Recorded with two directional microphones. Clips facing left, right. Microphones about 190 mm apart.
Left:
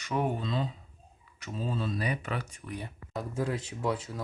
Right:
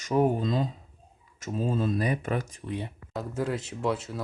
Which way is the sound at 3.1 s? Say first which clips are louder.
Right 2 dB; centre (ahead or behind).